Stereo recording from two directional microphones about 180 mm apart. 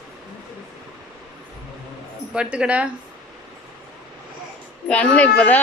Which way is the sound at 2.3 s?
5° right (ahead or behind).